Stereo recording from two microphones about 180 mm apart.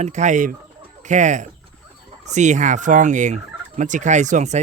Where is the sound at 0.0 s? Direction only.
40° right (ahead or behind).